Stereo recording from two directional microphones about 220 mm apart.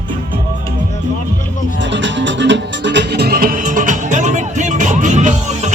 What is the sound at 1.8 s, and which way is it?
Music, 55° right (ahead or behind).